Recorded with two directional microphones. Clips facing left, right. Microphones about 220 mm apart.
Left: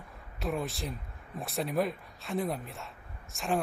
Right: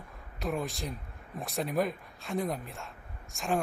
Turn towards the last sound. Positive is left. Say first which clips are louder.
# even
turn(degrees=0)  # may be behind; listen again after turning